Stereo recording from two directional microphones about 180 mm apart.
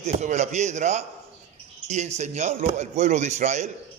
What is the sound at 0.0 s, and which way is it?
A man's voice, 40° right (ahead or behind).